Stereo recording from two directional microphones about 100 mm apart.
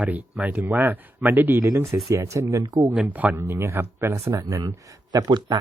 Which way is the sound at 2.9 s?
15° right (ahead or behind).